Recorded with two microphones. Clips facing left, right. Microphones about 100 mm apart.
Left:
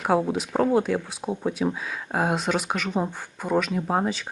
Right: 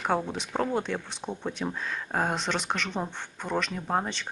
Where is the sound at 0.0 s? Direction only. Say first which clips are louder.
Left 6 dB; 5° left (ahead or behind).